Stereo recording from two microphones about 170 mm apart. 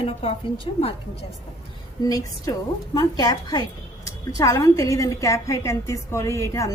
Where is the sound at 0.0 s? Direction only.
35° left (ahead or behind).